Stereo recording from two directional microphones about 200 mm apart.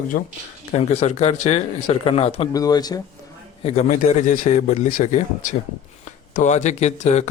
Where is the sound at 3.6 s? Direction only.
30° left (ahead or behind).